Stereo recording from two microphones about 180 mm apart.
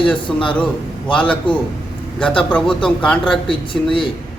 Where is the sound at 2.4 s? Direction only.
10° left (ahead or behind).